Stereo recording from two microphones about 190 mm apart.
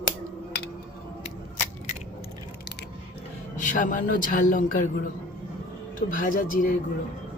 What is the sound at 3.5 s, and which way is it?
A man's voice, 40° left (ahead or behind).